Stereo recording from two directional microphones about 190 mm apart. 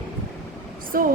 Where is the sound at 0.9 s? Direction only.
50° right (ahead or behind).